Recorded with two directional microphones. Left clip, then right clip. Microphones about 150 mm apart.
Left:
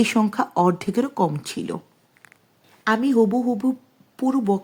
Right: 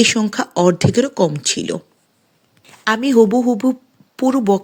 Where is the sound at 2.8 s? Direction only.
15° right (ahead or behind).